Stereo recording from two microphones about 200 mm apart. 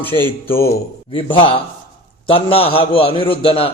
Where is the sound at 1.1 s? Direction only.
25° left (ahead or behind).